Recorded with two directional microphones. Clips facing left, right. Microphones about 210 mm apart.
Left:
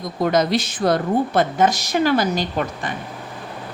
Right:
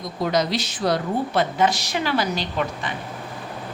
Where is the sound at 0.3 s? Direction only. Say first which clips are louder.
Left 4 dB; 50° left (ahead or behind).